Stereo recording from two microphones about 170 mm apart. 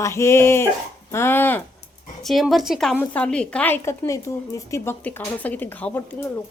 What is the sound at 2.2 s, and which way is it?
A woman's voice, centre (ahead or behind).